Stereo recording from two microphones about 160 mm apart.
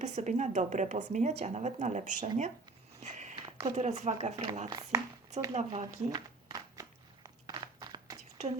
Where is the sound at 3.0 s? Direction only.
45° right (ahead or behind).